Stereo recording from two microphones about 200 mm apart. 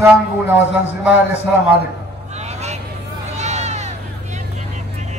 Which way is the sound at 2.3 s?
35° right (ahead or behind).